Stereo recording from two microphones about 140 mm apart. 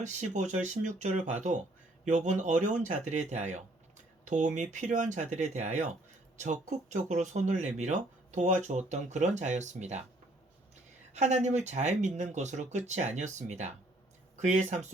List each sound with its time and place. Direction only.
0.0 s speech: 60° right (ahead or behind)
11.1 s speech: 55° right (ahead or behind)